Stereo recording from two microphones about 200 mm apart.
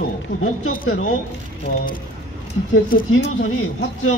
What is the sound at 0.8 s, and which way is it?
Speech, 80° left.